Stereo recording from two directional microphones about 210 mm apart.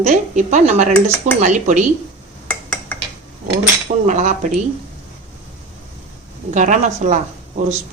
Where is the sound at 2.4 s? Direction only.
5° left (ahead or behind).